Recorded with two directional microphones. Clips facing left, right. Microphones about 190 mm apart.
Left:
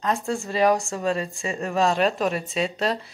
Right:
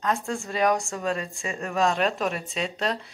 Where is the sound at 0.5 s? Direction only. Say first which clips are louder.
Left 3 dB; 30° left (ahead or behind).